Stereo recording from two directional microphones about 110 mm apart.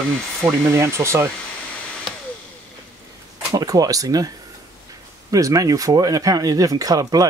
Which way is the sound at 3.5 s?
35° right (ahead or behind).